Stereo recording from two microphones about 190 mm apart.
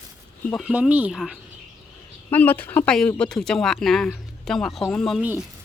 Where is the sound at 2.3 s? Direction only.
10° left (ahead or behind); by 5.4 s 5° right (ahead or behind).